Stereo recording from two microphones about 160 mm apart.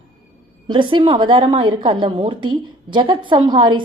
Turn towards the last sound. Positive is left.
turn(degrees=-30)  # may be behind; listen again after turning